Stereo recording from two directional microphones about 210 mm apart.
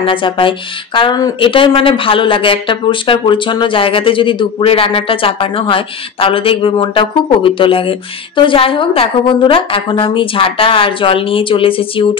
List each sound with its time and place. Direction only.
0.0 s speech: 25° left (ahead or behind)